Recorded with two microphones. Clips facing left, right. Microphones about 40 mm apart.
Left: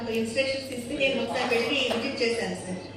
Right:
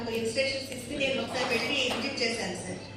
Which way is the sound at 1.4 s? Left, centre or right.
Centre.